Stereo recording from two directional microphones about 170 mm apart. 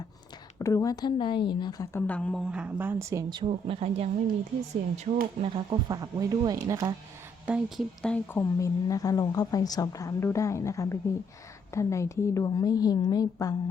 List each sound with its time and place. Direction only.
0.6 s speech: 20° left (ahead or behind)
1.9 s speech: 10° left (ahead or behind)
2.5 s speech: 10° right (ahead or behind)
3.5 s speech: 35° right (ahead or behind)
5.4 s speech: 25° right (ahead or behind)
7.4 s speech: 5° right (ahead or behind)
8.0 s speech: 10° left (ahead or behind)